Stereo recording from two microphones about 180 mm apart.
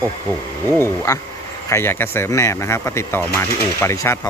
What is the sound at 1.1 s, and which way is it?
Speech, 20° left (ahead or behind).